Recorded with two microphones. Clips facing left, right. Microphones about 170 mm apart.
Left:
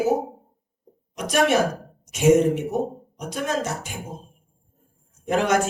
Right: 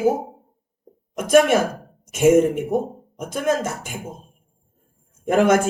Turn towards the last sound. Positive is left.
turn(degrees=-50)  # may be behind; listen again after turning